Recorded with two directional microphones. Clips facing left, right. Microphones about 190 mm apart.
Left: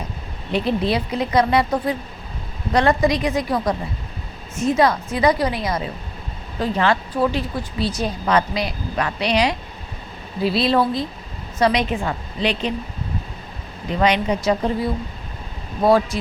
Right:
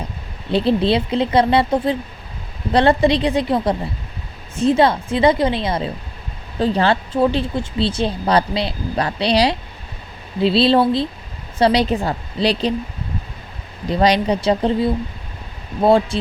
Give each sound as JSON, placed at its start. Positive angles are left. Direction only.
{"t": 0.5, "sound": "a woman's voice", "side_deg": -30}
{"t": 13.9, "sound": "a woman's voice", "side_deg": -35}